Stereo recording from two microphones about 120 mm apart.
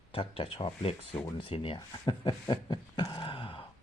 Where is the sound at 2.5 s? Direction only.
35° left (ahead or behind).